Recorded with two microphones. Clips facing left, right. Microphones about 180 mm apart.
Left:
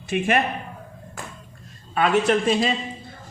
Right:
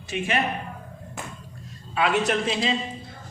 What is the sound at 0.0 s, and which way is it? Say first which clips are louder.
Speech: left 6 dB; 50° left (ahead or behind).